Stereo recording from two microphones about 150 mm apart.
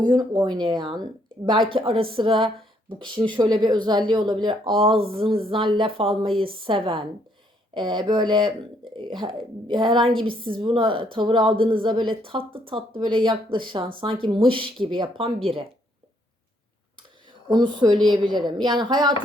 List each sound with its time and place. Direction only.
0.0 s speech: 30° right (ahead or behind)
17.5 s speech: 30° right (ahead or behind)